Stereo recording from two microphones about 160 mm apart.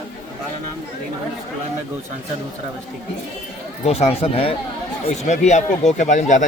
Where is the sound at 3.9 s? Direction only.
40° left (ahead or behind).